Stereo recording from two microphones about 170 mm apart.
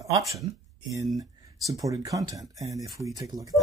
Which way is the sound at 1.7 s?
20° right (ahead or behind).